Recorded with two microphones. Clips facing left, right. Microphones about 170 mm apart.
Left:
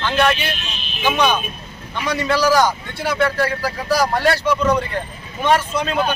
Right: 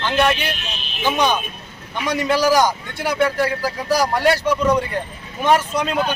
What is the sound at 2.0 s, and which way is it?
A man's voice, 15° right (ahead or behind).